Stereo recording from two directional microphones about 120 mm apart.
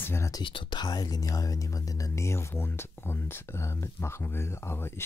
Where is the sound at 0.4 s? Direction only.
45° left (ahead or behind).